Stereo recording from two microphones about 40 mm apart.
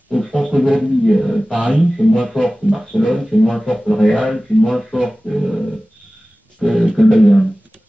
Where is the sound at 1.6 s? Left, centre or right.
Centre.